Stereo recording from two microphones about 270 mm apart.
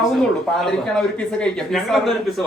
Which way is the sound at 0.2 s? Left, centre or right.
Centre.